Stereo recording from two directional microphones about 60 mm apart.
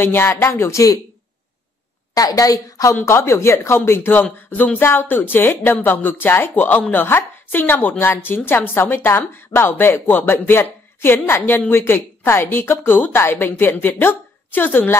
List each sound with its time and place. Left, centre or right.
0.0 s speech: left
2.1 s a woman's voice: left
3.1 s a woman's voice: left